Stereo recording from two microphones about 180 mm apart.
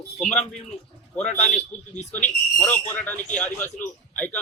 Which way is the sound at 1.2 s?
40° left (ahead or behind).